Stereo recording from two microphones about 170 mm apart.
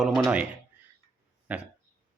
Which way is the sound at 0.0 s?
Centre (ahead or behind).